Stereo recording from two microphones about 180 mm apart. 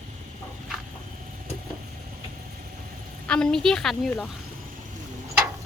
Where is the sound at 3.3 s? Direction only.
5° left (ahead or behind).